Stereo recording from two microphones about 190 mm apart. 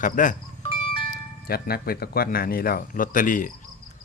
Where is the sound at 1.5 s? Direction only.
55° left (ahead or behind).